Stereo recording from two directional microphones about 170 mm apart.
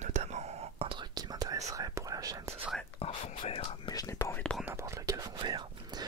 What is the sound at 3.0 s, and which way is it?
Whispering, 30° left (ahead or behind).